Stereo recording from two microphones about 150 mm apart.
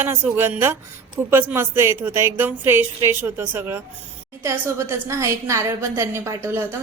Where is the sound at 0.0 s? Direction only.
15° right (ahead or behind).